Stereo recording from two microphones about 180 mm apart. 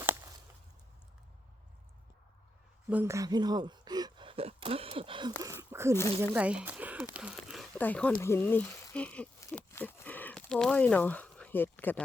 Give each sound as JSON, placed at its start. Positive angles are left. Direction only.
{"t": 0.0, "sound": "a sound", "side_deg": -10}
{"t": 2.9, "sound": "speech", "side_deg": -15}
{"t": 5.4, "sound": "speech", "side_deg": -15}
{"t": 7.8, "sound": "speech", "side_deg": 10}